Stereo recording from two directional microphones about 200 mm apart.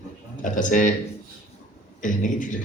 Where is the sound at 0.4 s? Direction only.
40° left (ahead or behind).